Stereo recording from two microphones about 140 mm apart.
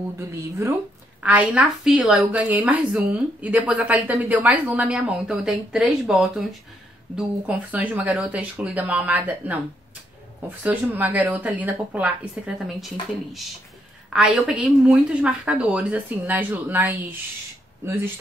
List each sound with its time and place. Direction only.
0.2 s speech: 20° right (ahead or behind)
1.2 s a woman's voice: 10° right (ahead or behind)
10.6 s a woman's voice: 10° right (ahead or behind)
14.1 s a woman's voice: 10° right (ahead or behind)